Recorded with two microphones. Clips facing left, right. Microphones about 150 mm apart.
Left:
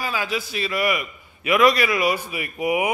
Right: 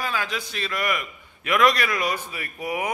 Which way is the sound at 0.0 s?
5° left (ahead or behind).